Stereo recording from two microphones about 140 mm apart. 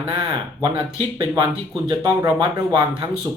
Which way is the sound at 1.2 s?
25° right (ahead or behind).